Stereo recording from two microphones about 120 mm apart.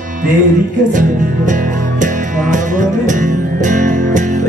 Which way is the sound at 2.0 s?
90° right.